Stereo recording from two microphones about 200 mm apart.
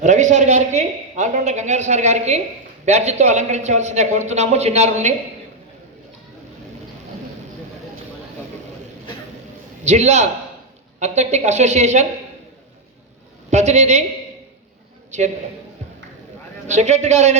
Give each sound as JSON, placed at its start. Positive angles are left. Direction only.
{"t": 0.0, "sound": "a woman's voice", "side_deg": -35}
{"t": 9.8, "sound": "a man's voice", "side_deg": -35}
{"t": 13.5, "sound": "a woman's voice", "side_deg": -35}
{"t": 16.6, "sound": "a woman's voice", "side_deg": -35}